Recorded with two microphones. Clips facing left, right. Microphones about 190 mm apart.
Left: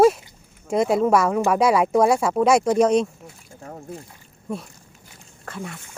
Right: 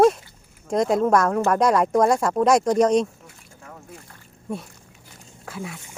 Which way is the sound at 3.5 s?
35° left (ahead or behind).